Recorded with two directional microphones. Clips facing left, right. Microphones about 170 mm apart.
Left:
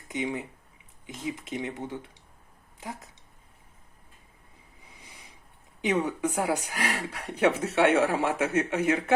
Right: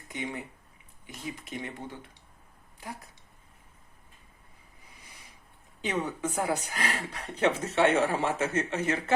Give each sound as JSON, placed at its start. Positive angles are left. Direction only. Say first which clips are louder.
{"t": 0.1, "sound": "speech", "louder": "left 5 dB", "side_deg": 20}
{"t": 5.8, "sound": "speech", "louder": "left 5 dB", "side_deg": 15}